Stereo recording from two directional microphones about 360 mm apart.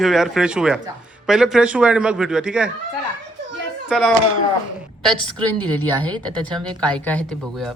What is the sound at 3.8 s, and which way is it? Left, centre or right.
Speech, centre.